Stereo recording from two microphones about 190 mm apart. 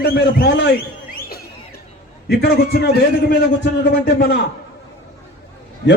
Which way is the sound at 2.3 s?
55° left (ahead or behind).